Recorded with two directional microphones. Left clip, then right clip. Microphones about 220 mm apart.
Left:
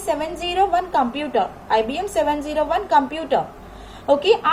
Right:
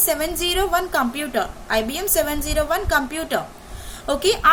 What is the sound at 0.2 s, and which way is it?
A woman's voice, 60° right (ahead or behind).